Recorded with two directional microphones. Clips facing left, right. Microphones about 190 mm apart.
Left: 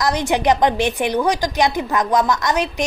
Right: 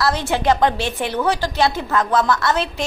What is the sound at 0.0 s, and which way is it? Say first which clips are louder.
A woman's voice: left 1 dB; 15° left (ahead or behind).